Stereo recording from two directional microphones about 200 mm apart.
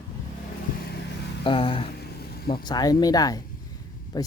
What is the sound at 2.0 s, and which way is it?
Vehicle, 50° left (ahead or behind).